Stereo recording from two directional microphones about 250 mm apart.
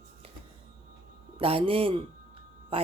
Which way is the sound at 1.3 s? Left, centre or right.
Right.